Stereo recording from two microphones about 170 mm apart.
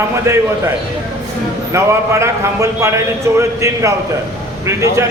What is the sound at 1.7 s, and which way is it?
A man's voice, 15° right (ahead or behind).